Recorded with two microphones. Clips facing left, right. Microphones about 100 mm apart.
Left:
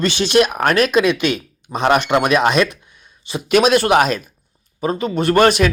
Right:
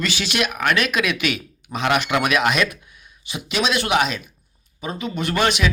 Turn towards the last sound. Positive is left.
turn(degrees=45)  # may be behind; listen again after turning